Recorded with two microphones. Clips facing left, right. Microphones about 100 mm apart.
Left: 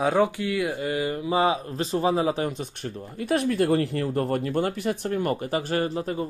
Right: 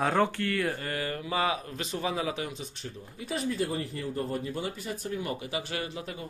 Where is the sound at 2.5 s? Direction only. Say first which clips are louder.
Left 8 dB; 55° left (ahead or behind).